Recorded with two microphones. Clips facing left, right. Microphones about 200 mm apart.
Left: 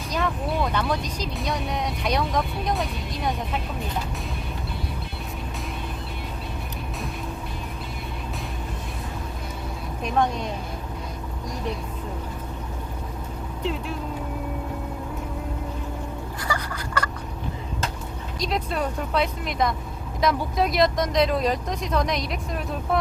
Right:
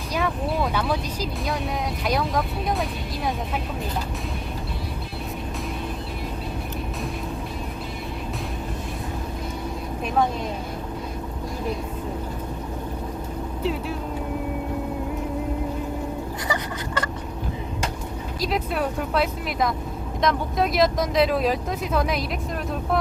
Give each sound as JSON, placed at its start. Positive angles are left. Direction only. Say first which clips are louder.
{"t": 0.1, "sound": "speech", "louder": "right 1 dB", "side_deg": -5}
{"t": 13.6, "sound": "speech", "louder": "right 2 dB", "side_deg": -5}
{"t": 16.5, "sound": "a sound", "louder": "even", "side_deg": -20}
{"t": 18.3, "sound": "speech", "louder": "right 1 dB", "side_deg": -5}